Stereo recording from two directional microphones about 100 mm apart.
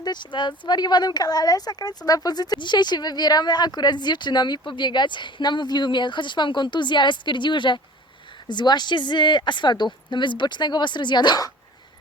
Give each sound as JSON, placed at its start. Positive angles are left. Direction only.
{"t": 0.0, "sound": "speech", "side_deg": 50}